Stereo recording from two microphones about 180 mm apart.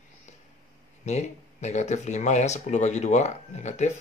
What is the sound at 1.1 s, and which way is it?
Speech, 40° left (ahead or behind).